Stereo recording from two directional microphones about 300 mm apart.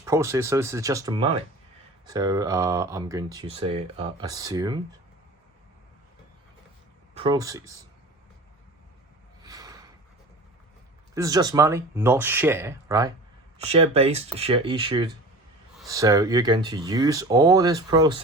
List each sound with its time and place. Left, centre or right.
0.0 s speech: centre
7.1 s speech: centre
9.4 s a sound: centre
11.1 s speech: centre